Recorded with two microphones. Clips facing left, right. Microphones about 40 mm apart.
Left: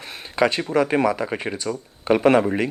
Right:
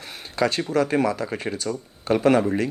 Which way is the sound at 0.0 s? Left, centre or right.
Centre.